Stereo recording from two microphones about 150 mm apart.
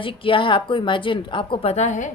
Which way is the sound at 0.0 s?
35° left (ahead or behind).